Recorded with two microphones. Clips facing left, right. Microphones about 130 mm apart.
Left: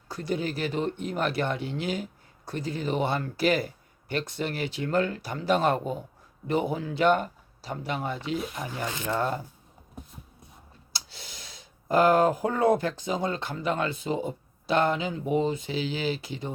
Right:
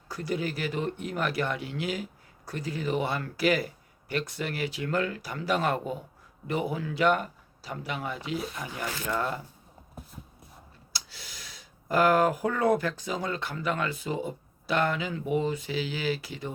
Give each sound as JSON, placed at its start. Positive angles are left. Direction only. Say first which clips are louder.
{"t": 0.1, "sound": "speech", "louder": "left 1 dB", "side_deg": 25}
{"t": 10.9, "sound": "speech", "louder": "left 1 dB", "side_deg": 25}